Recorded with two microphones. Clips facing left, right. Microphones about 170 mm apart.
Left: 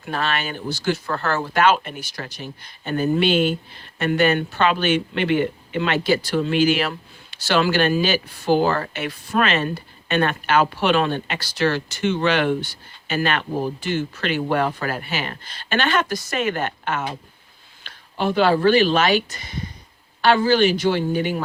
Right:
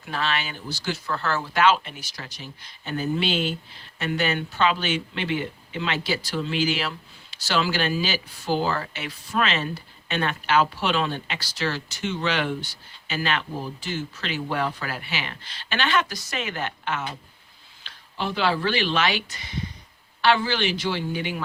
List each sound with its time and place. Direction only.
0.0 s speech: 50° left (ahead or behind)